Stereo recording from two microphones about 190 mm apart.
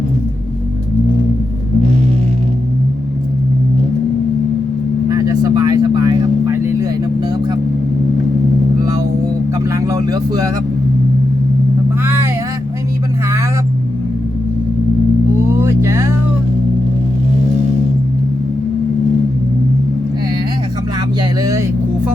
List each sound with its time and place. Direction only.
5.0 s vehicle: 20° right (ahead or behind)
8.8 s vehicle: 20° right (ahead or behind)
15.4 s vehicle: 15° right (ahead or behind)
21.4 s vehicle: 15° right (ahead or behind)